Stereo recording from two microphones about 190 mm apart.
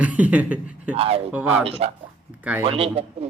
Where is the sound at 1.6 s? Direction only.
30° right (ahead or behind).